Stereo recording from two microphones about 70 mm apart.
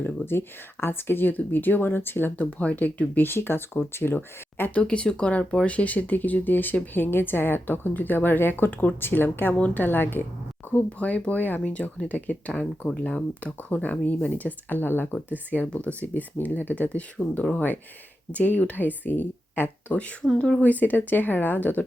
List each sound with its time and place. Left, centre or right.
0.0 s speech: left
4.8 s speech: centre
10.8 s speech: centre